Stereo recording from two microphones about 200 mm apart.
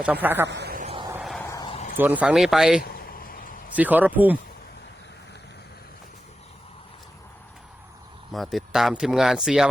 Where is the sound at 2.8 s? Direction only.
50° left (ahead or behind).